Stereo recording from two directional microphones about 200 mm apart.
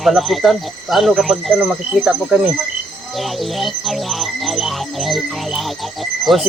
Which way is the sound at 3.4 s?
Centre (ahead or behind).